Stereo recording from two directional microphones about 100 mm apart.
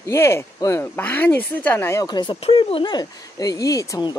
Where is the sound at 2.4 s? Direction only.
65° left (ahead or behind).